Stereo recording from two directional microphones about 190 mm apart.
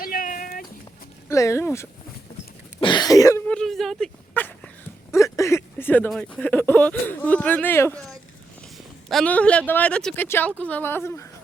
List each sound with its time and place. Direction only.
0.0 s a sound: 45° left (ahead or behind)
1.3 s speech: 15° left (ahead or behind)
2.8 s cough: 20° left (ahead or behind)
3.4 s a sound: 5° left (ahead or behind)
5.1 s speech: 15° left (ahead or behind)
9.0 s speech: 5° left (ahead or behind)